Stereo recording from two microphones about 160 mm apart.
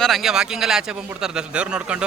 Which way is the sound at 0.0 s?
Centre (ahead or behind).